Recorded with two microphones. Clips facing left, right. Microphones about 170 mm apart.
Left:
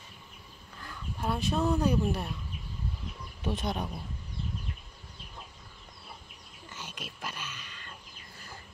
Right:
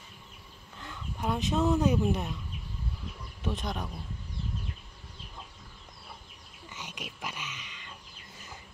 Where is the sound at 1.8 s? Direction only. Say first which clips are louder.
Right 1 dB; 20° right (ahead or behind).